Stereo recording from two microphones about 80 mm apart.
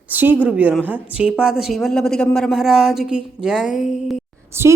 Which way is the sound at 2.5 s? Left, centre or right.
Centre.